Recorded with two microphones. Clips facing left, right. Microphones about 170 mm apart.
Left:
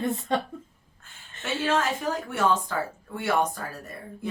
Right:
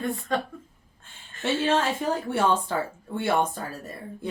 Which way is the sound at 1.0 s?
30° right (ahead or behind).